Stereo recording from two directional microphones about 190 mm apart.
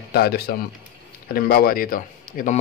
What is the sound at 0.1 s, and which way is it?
Speech, 55° left (ahead or behind).